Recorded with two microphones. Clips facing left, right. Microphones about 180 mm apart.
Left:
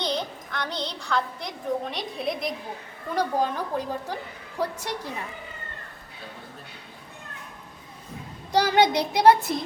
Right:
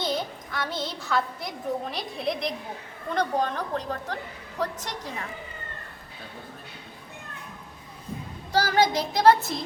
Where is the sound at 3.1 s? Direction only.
10° left (ahead or behind).